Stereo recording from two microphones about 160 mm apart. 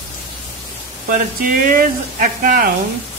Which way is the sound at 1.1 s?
60° right (ahead or behind).